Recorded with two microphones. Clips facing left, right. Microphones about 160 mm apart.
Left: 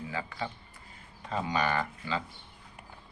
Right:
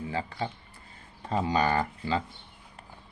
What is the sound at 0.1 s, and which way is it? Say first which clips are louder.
Speech: right 4 dB; 35° right (ahead or behind).